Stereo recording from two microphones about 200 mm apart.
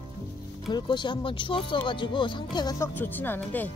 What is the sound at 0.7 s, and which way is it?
Speech, 25° left (ahead or behind).